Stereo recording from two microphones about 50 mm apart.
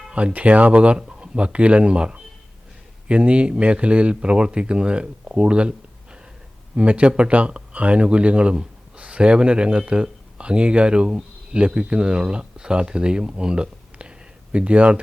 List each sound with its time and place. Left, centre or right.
0.1 s speech: right